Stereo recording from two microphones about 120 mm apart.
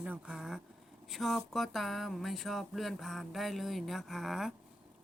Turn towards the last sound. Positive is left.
turn(degrees=0)  # may be behind; listen again after turning